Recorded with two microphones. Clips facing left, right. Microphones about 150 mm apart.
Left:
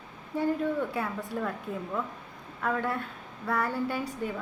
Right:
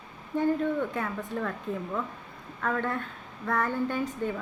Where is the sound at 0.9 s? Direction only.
10° left (ahead or behind).